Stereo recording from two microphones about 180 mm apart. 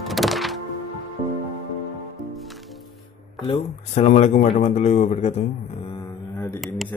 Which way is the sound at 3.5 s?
40° left (ahead or behind).